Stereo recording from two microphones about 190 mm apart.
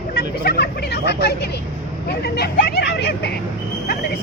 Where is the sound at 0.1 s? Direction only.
55° left (ahead or behind).